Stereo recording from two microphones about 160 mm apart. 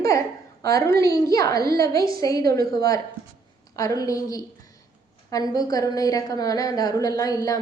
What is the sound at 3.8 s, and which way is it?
A woman's voice, 20° left (ahead or behind).